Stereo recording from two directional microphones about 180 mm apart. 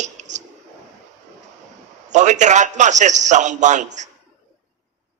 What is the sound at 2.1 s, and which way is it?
A woman's voice, 40° right (ahead or behind).